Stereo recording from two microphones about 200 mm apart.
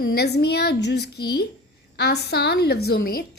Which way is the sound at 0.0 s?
50° left (ahead or behind).